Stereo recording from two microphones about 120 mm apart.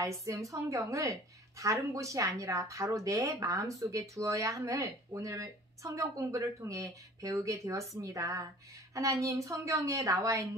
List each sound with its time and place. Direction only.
0.0 s speech: 25° right (ahead or behind)